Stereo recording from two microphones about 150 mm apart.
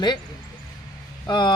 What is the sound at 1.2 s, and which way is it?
Speech, 30° left (ahead or behind).